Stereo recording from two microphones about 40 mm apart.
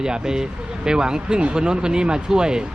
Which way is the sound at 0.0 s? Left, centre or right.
Centre.